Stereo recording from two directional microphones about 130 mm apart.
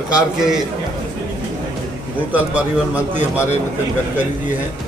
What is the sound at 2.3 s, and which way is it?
Speech, 10° right (ahead or behind).